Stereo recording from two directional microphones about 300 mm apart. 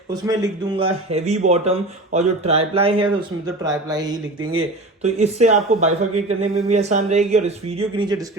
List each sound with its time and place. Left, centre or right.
0.1 s speech: centre